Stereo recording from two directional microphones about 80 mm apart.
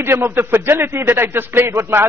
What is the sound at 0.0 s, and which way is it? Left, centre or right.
A man's voice, right.